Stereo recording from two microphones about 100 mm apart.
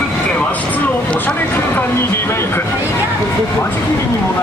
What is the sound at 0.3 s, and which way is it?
Vehicle, 15° left (ahead or behind).